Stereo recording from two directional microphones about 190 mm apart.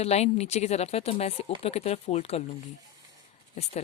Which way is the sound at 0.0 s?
35° left (ahead or behind).